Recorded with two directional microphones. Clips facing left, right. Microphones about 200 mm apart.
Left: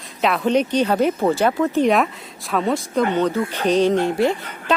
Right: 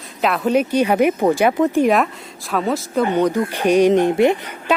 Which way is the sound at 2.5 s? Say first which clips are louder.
Even; centre (ahead or behind).